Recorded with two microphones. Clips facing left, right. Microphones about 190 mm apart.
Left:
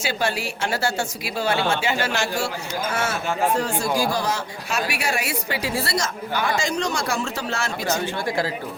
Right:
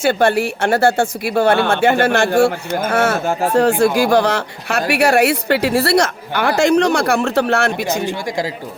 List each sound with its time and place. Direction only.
0.0 s a woman's voice: 55° right (ahead or behind)
7.9 s speech: 15° right (ahead or behind)